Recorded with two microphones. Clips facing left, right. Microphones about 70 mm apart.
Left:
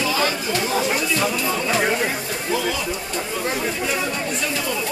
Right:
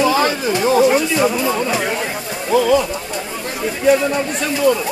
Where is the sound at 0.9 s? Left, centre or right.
Centre.